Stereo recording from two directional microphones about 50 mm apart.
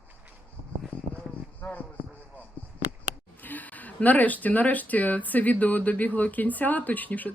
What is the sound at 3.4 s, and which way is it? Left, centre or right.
Speech, left.